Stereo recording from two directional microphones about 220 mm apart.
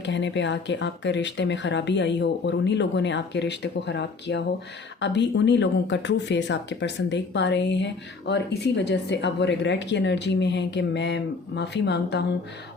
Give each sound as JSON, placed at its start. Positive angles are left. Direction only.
{"t": 0.0, "sound": "speech", "side_deg": 55}